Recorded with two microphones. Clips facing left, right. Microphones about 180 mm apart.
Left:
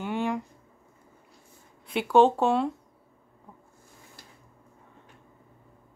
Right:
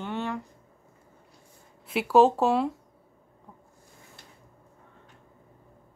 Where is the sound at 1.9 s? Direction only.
5° right (ahead or behind).